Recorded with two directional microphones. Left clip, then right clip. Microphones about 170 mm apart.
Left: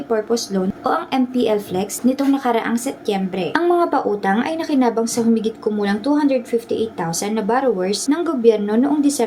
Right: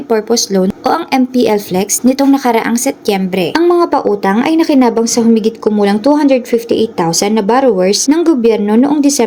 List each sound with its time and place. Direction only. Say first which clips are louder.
0.1 s a woman's voice: right 8 dB; 40° right (ahead or behind)